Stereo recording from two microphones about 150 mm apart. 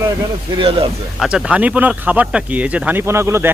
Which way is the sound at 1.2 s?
5° right (ahead or behind).